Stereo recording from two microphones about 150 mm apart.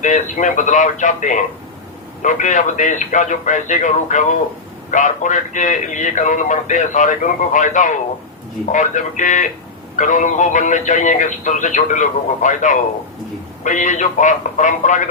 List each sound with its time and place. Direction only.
0.0 s a man's voice: 55° left (ahead or behind)